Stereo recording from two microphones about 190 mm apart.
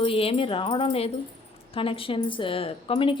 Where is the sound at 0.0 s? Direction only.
30° left (ahead or behind).